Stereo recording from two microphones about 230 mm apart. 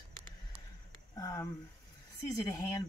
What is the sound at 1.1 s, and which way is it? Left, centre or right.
Speech, centre.